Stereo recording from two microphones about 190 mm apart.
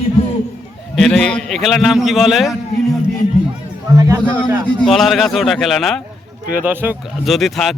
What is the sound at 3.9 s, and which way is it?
Speech, 15° right (ahead or behind).